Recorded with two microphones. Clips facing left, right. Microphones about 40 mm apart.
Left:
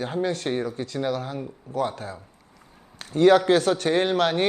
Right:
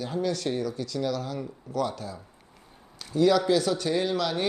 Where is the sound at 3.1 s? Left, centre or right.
Left.